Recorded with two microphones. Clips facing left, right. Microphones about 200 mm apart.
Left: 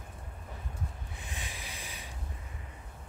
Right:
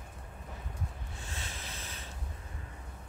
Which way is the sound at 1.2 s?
15° left (ahead or behind).